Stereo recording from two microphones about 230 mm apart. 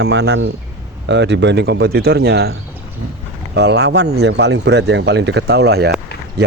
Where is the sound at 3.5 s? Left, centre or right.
Right.